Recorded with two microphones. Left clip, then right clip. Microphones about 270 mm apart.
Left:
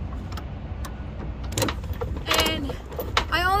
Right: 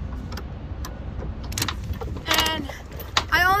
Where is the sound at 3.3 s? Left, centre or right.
Centre.